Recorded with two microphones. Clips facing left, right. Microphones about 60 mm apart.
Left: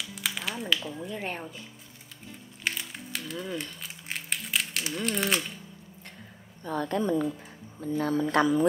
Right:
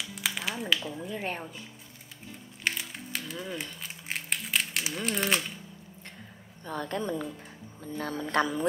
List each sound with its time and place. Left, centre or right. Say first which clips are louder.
0.0 s music: even; centre
6.6 s a woman's voice: left 4 dB; left